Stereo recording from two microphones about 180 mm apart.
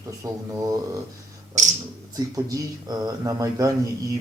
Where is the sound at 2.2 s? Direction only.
20° right (ahead or behind).